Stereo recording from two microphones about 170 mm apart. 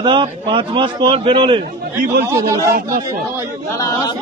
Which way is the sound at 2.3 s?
20° right (ahead or behind).